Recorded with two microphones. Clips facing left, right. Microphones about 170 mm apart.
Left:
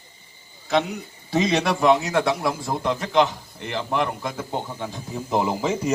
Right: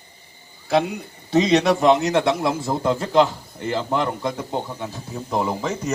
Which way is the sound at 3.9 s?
20° right (ahead or behind).